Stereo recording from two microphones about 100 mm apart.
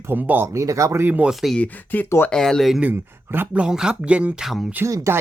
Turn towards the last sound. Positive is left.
turn(degrees=-30)  # may be behind; listen again after turning